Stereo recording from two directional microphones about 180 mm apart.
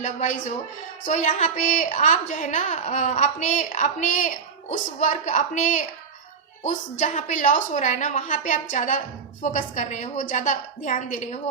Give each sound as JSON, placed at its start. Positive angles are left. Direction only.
{"t": 0.0, "sound": "a woman's voice", "side_deg": 40}
{"t": 7.0, "sound": "a woman's voice", "side_deg": 45}